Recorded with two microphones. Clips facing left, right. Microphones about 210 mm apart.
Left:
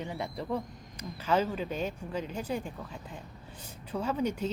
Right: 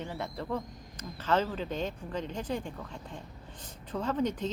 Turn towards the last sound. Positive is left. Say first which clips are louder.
# even
turn(degrees=10)  # may be behind; listen again after turning